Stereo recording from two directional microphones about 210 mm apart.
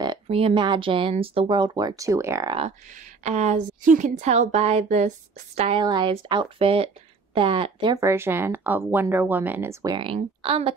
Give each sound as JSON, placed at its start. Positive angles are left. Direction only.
{"t": 0.0, "sound": "speech", "side_deg": -25}
{"t": 2.6, "sound": "a woman's voice", "side_deg": -35}
{"t": 9.9, "sound": "speech", "side_deg": -25}